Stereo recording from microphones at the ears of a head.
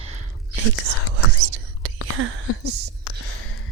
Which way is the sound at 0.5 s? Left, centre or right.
Right.